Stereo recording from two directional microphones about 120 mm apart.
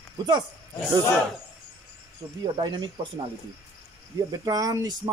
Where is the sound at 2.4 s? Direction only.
35° right (ahead or behind).